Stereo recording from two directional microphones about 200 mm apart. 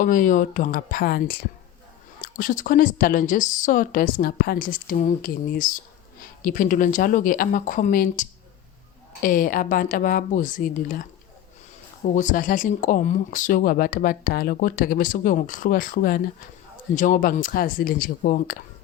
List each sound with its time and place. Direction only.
0.0 s speech: 40° left (ahead or behind)
12.0 s speech: 40° left (ahead or behind)